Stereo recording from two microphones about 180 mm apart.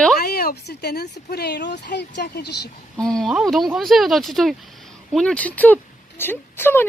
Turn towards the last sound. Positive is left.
turn(degrees=10)  # may be behind; listen again after turning